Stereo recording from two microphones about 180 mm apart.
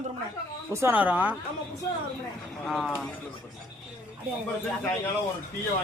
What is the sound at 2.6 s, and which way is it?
Speech, centre (ahead or behind).